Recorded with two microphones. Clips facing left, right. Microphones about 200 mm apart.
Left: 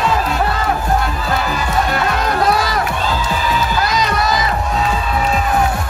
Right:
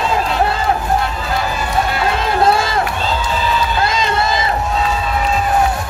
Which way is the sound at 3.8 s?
25° right (ahead or behind).